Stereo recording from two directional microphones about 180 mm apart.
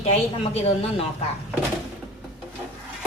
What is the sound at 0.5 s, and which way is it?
Speech, 30° left (ahead or behind).